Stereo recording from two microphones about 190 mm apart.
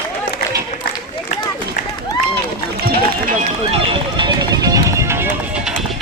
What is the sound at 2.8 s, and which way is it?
Run, 55° right (ahead or behind).